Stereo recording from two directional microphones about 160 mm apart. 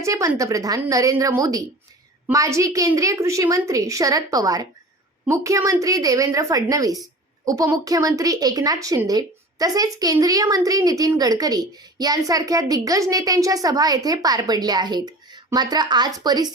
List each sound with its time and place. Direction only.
0.0 s a woman's voice: 20° right (ahead or behind)